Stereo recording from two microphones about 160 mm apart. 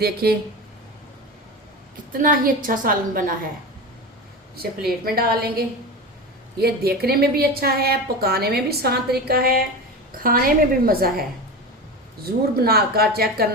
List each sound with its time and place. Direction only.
0.0 s a woman's voice: 75° right (ahead or behind)
2.1 s a woman's voice: 60° right (ahead or behind)
5.0 s a woman's voice: 70° right (ahead or behind)